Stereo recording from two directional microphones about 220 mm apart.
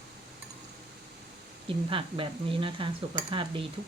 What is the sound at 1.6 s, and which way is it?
Speech, 25° right (ahead or behind).